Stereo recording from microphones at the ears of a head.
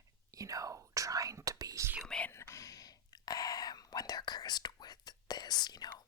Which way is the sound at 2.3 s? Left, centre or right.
Left.